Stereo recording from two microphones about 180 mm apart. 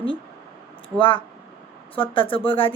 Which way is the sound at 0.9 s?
30° left (ahead or behind).